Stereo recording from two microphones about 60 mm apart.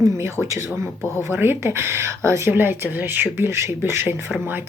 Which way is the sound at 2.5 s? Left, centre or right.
Right.